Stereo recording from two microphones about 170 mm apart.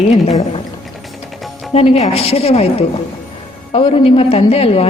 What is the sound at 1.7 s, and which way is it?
A woman's voice, 35° left (ahead or behind).